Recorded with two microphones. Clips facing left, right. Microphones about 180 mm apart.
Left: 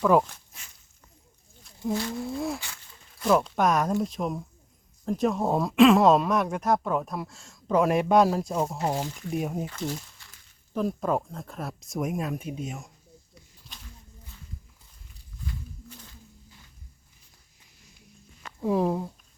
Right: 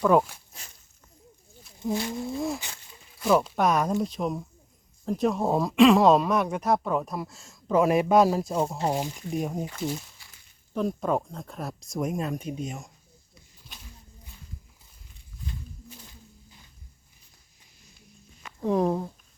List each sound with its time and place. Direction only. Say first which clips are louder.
0.1 s speech: even; 5° right (ahead or behind)
1.9 s speech: even; 15° right (ahead or behind)
2.1 s speech: right 1 dB; centre (ahead or behind)
2.6 s a sound: right 1 dB; 20° right (ahead or behind)
3.2 s speech: even; centre (ahead or behind)
8.9 s speech: right 1 dB; 15° right (ahead or behind)
9.4 s speech: right 1 dB; 5° left (ahead or behind)
9.6 s speech: right 1 dB; 10° right (ahead or behind)
10.8 s speech: even; centre (ahead or behind)
18.6 s speech: right 1 dB; 5° left (ahead or behind)